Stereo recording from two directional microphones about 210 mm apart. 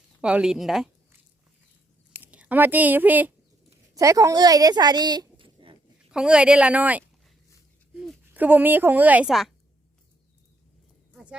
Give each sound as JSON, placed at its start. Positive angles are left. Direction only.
{"t": 0.2, "sound": "speech", "side_deg": -5}
{"t": 6.1, "sound": "a woman's voice", "side_deg": -5}
{"t": 11.1, "sound": "clip-clop", "side_deg": -5}